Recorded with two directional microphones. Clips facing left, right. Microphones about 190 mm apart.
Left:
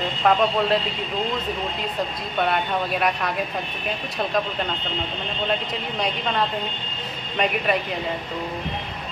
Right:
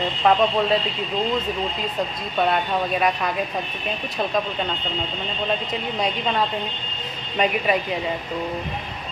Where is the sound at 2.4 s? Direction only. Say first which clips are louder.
Right 2 dB; centre (ahead or behind).